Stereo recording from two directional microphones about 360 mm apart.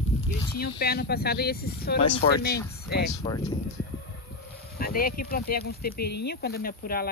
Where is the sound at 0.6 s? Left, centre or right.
Left.